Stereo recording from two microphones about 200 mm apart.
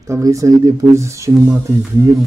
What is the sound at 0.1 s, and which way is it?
Speech, 15° right (ahead or behind).